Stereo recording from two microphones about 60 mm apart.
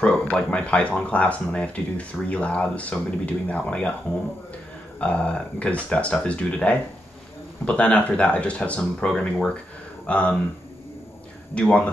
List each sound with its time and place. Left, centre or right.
0.3 s speech: left
5.0 s speech: left
11.5 s speech: centre